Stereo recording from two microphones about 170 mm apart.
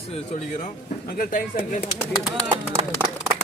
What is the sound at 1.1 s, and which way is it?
Speech, 60° left (ahead or behind).